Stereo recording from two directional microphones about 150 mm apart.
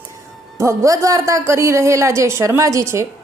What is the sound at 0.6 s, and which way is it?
A woman's voice, 20° right (ahead or behind).